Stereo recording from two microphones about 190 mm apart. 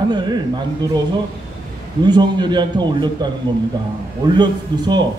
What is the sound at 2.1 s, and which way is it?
A man's voice, 25° right (ahead or behind).